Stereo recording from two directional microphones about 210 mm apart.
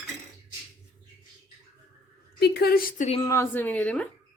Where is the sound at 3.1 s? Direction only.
15° left (ahead or behind).